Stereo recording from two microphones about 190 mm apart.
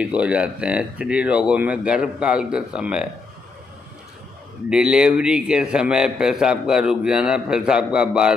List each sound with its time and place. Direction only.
0.0 s a man's voice: 5° right (ahead or behind)
4.6 s a man's voice: 5° right (ahead or behind)